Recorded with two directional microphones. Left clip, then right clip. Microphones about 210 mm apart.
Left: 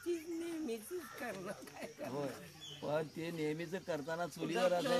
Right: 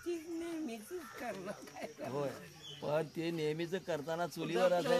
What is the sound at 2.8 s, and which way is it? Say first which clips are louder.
Speech: right 3 dB; 50° right (ahead or behind).